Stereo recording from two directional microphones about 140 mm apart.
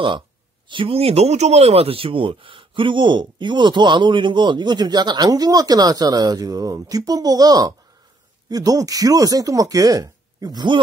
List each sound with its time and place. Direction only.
0.7 s speech: 40° right (ahead or behind)